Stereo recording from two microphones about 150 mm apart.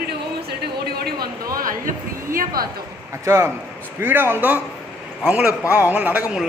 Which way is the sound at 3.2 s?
20° right (ahead or behind).